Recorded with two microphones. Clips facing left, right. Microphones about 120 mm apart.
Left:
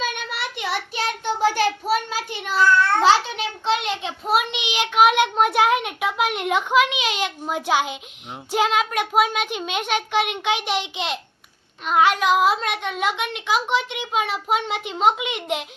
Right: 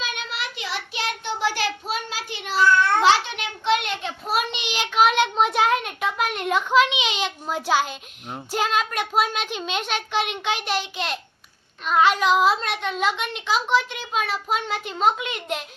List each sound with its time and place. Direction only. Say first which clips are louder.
0.0 s child singing: left 3 dB; 50° left (ahead or behind)
3.0 s child singing: left 1 dB; 35° left (ahead or behind); by 7.9 s 15° left (ahead or behind)
8.5 s a child's voice: left 3 dB; 15° left (ahead or behind)
11.9 s a child's voice: left 1 dB; 10° left (ahead or behind)